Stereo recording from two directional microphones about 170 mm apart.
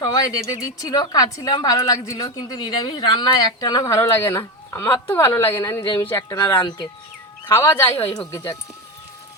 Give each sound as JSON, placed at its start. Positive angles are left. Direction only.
{"t": 0.0, "sound": "a woman's voice", "side_deg": 20}
{"t": 7.4, "sound": "speech", "side_deg": 15}